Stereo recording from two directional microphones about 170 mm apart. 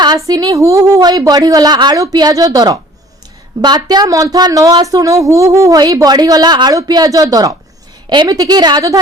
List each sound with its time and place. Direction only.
0.3 s speech: 20° right (ahead or behind)